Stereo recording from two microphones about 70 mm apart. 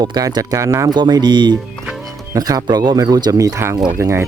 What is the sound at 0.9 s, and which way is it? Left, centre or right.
Speech, right.